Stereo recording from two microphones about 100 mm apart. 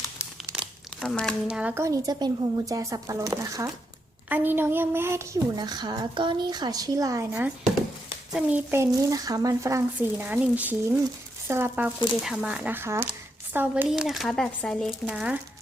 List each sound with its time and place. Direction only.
1.0 s speech: 10° left (ahead or behind)
1.5 s speech: 10° right (ahead or behind)
1.7 s a woman's voice: 30° right (ahead or behind)
4.3 s a woman's voice: 20° right (ahead or behind)
8.3 s speech: 15° right (ahead or behind)
8.8 s a woman's voice: 35° right (ahead or behind)
10.2 s speech: 15° right (ahead or behind)
12.2 s speech: 5° right (ahead or behind)
13.9 s speech: 5° right (ahead or behind)
14.8 s speech: 10° right (ahead or behind)